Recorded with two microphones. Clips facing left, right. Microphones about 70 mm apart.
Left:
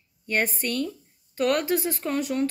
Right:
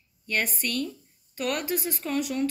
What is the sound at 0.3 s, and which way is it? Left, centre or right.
A woman's voice, left.